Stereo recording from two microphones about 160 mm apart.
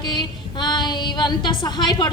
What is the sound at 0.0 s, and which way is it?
A woman's voice, 30° left (ahead or behind).